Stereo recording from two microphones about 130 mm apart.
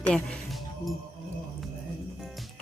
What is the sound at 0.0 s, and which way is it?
Speech, 10° left (ahead or behind).